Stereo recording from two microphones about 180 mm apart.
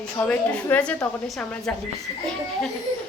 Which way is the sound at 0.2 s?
10° left (ahead or behind).